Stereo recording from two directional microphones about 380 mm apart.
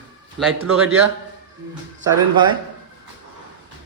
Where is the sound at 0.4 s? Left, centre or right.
Centre.